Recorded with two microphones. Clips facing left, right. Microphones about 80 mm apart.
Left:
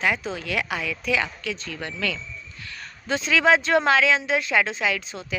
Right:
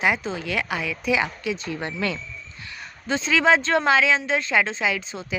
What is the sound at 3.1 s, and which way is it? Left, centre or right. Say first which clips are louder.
A woman's voice: even; centre.